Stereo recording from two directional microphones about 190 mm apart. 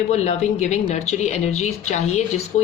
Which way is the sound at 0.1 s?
35° left (ahead or behind).